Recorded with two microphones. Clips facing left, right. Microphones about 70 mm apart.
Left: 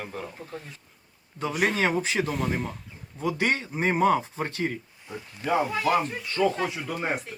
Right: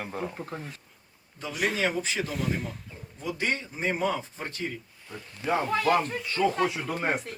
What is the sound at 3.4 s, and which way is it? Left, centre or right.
Speech, left.